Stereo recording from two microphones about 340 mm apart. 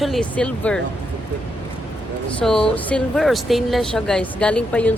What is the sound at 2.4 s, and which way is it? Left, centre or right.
Speech, centre.